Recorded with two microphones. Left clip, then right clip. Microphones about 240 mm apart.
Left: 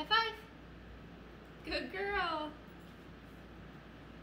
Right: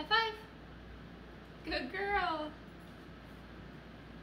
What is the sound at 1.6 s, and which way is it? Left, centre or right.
Speech, centre.